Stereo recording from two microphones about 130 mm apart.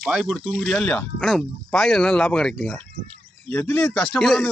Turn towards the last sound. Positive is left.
turn(degrees=5)  # may be behind; listen again after turning